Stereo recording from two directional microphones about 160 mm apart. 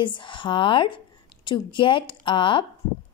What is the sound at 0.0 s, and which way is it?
A woman's voice, 30° left (ahead or behind).